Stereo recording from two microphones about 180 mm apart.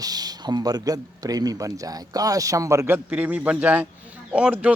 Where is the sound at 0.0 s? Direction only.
20° right (ahead or behind).